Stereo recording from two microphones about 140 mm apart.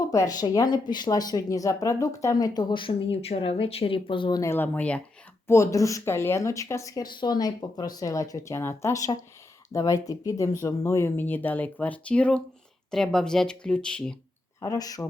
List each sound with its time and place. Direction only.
0.0 s speech: 25° left (ahead or behind)
4.4 s speech: 15° left (ahead or behind)
5.5 s speech: 20° left (ahead or behind)
14.6 s speech: 25° left (ahead or behind)